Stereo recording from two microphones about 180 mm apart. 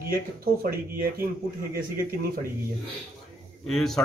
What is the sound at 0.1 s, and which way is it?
Speech, 55° right (ahead or behind).